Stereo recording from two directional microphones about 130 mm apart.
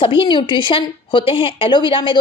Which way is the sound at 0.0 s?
40° left (ahead or behind).